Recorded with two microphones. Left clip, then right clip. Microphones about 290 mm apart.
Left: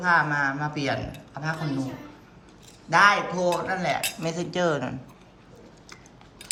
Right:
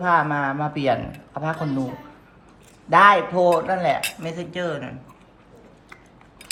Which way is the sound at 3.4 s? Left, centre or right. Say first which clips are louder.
Right 7 dB; centre.